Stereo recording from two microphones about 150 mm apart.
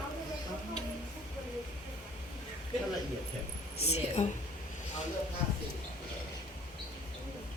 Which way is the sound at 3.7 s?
45° left (ahead or behind).